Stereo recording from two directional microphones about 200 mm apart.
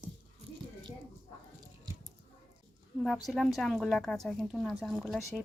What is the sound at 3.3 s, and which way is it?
A woman's voice, centre (ahead or behind).